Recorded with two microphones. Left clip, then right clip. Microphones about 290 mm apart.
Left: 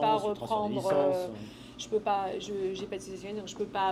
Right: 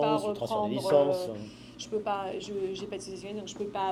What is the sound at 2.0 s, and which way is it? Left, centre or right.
A woman's voice, centre.